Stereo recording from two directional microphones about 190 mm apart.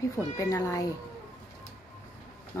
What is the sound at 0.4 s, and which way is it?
Speech, 15° left (ahead or behind).